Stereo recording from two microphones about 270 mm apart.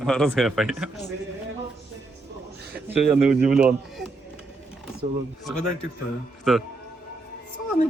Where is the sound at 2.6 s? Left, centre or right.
Right.